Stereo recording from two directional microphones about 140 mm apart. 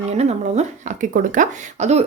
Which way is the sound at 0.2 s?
50° right (ahead or behind).